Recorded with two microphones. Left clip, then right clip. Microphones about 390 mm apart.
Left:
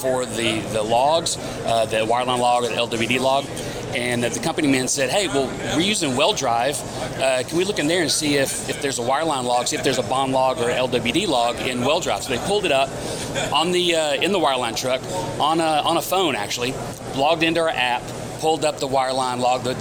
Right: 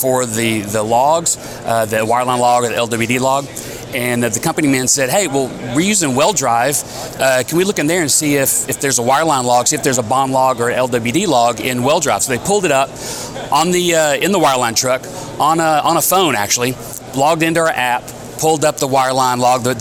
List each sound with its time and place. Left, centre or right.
0.0 s speech: right